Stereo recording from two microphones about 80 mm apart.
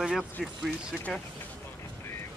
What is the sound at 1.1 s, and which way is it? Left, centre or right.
Speech, centre.